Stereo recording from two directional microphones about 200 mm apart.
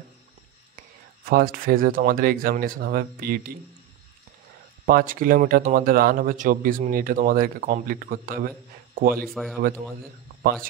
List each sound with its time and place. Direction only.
1.3 s speech: 45° right (ahead or behind)
4.8 s speech: 45° right (ahead or behind)
9.2 s speech: centre (ahead or behind)
10.4 s speech: 45° right (ahead or behind)